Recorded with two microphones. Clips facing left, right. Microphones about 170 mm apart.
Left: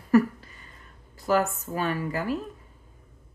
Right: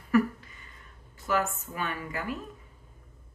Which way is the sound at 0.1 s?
35° left (ahead or behind).